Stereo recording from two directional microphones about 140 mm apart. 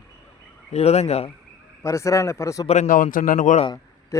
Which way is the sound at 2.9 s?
75° left (ahead or behind).